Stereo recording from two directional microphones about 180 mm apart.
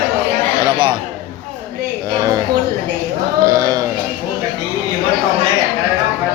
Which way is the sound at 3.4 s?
25° right (ahead or behind).